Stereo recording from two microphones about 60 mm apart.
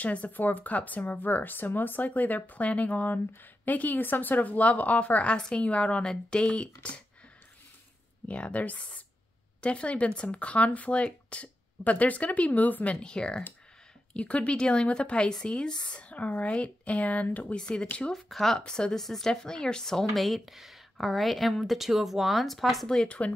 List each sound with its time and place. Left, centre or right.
0.0 s speech: left
8.3 s speech: left
12.9 s speech: centre
18.1 s speech: centre
23.0 s speech: left